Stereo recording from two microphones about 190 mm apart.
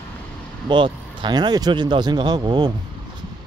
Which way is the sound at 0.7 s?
25° right (ahead or behind).